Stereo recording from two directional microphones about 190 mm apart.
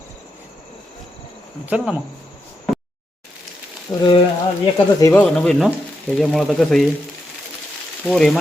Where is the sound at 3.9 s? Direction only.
20° left (ahead or behind); by 6.9 s centre (ahead or behind).